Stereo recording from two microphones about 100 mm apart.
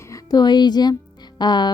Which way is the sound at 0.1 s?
40° left (ahead or behind).